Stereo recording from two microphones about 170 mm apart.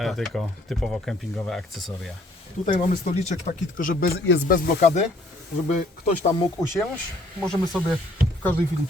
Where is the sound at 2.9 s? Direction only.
40° left (ahead or behind).